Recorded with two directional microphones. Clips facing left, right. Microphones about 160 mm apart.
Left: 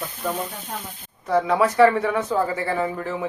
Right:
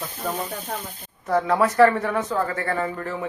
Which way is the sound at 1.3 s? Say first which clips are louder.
Left 1 dB; centre (ahead or behind).